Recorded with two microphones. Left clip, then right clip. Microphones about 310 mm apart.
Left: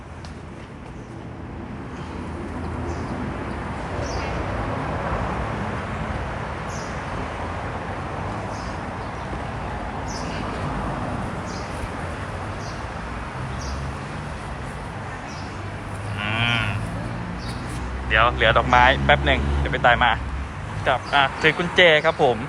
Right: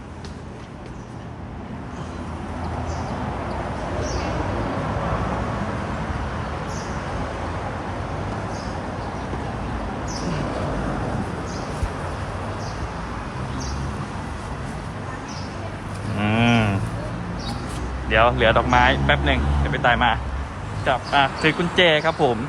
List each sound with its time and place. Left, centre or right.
16.1 s livestock: centre
18.1 s speech: centre